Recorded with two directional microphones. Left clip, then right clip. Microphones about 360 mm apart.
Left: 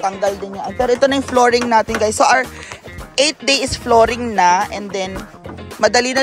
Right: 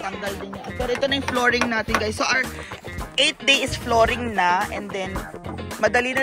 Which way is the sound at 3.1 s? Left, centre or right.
Centre.